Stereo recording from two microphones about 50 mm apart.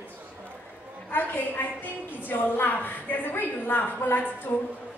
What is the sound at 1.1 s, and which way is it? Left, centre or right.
A woman's voice, left.